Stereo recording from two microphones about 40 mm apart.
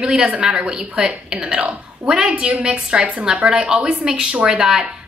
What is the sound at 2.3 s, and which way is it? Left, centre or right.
Speech, right.